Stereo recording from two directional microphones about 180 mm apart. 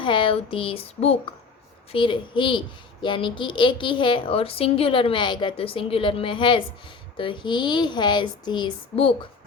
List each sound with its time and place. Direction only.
0.0 s a woman's voice: 25° left (ahead or behind)